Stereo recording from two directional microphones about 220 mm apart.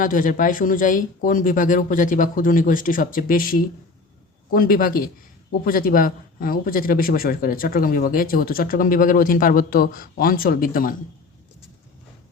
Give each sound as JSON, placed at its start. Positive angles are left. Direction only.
{"t": 0.0, "sound": "a man's voice", "side_deg": 40}